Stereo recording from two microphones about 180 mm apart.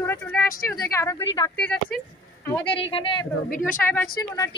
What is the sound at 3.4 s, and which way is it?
Speech, 50° left (ahead or behind).